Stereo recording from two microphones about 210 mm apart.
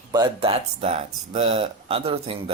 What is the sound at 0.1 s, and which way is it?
Speech, 25° right (ahead or behind).